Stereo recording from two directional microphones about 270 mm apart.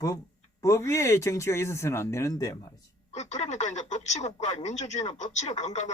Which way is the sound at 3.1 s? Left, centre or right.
Left.